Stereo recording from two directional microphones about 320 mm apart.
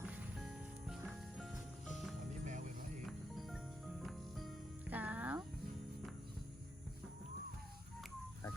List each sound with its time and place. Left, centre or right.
0.1 s music: centre
2.4 s music: right
3.1 s music: centre